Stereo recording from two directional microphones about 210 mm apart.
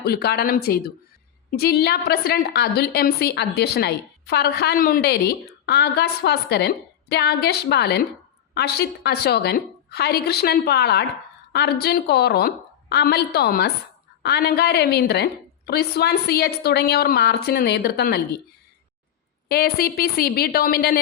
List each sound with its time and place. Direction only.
0.0 s a woman's voice: 50° left (ahead or behind)
19.5 s a woman's voice: 45° left (ahead or behind)